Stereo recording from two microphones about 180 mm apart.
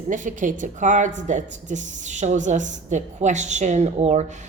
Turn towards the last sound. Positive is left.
turn(degrees=-40)  # may be behind; listen again after turning